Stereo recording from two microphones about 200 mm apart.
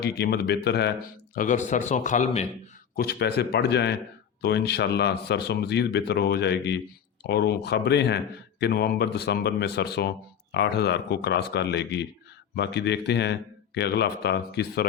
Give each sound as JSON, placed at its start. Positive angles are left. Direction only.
{"t": 0.0, "sound": "speech", "side_deg": 55}
{"t": 1.4, "sound": "a man's voice", "side_deg": 40}
{"t": 2.9, "sound": "speech", "side_deg": 50}